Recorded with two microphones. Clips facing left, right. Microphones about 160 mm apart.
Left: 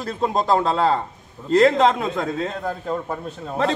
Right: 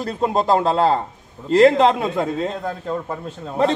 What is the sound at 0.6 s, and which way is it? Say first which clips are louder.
Speech: right 2 dB; 35° right (ahead or behind).